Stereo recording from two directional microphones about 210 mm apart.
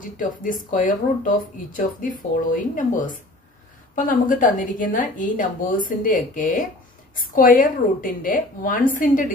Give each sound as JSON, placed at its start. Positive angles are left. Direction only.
{"t": 0.0, "sound": "a woman's voice", "side_deg": 40}